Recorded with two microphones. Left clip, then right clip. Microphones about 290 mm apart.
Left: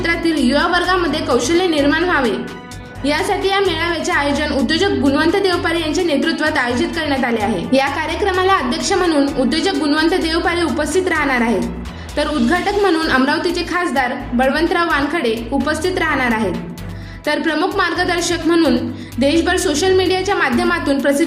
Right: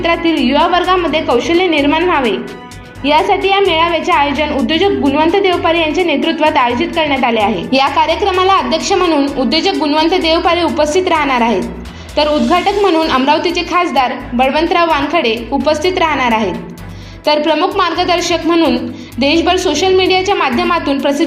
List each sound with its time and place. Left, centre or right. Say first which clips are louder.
0.3 s a woman's voice: right 4 dB; centre
4.8 s a woman's voice: right 5 dB; centre